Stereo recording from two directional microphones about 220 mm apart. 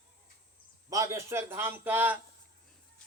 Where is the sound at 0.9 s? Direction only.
15° right (ahead or behind).